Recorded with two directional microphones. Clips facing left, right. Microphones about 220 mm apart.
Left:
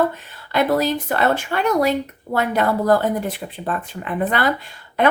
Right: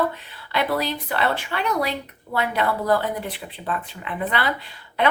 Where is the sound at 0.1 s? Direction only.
45° left (ahead or behind).